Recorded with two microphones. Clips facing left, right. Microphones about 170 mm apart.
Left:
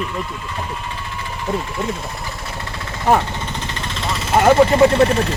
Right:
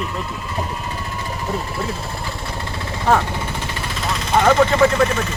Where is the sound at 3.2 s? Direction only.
10° right (ahead or behind); by 4.5 s 5° left (ahead or behind).